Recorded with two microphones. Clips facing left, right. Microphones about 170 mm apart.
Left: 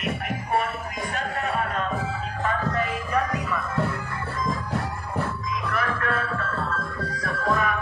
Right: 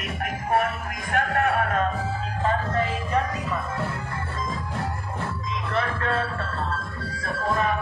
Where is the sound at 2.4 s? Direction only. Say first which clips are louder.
Right 2 dB; 25° right (ahead or behind).